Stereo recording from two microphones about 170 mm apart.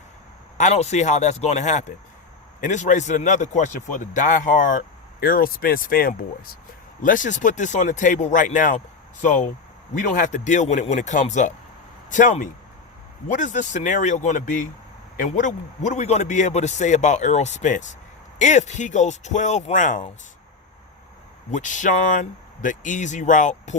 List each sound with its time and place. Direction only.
0.5 s speech: 40° left (ahead or behind)
5.2 s speech: 60° left (ahead or behind)
21.5 s speech: 45° left (ahead or behind)